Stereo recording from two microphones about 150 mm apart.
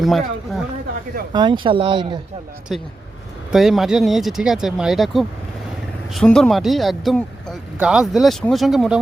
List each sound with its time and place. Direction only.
0.0 s speech: centre (ahead or behind)
1.3 s speech: 30° right (ahead or behind)
2.7 s speech: centre (ahead or behind)